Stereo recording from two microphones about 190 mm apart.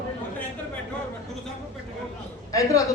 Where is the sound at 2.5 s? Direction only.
15° left (ahead or behind).